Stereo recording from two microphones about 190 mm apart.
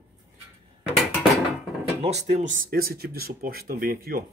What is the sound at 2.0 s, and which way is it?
Speech, 40° right (ahead or behind).